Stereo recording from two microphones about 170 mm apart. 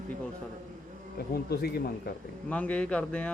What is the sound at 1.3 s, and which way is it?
Speech, 65° left (ahead or behind).